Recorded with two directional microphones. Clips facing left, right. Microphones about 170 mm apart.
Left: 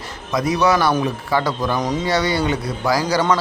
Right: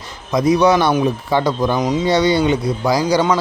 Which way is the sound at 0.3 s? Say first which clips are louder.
Right 4 dB; 20° right (ahead or behind).